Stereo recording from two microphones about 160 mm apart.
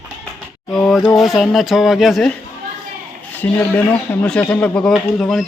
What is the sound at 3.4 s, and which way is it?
Speech, 10° left (ahead or behind).